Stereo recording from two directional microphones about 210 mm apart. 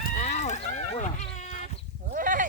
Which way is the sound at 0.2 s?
35° left (ahead or behind).